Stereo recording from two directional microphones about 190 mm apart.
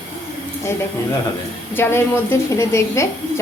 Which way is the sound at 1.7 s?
10° left (ahead or behind).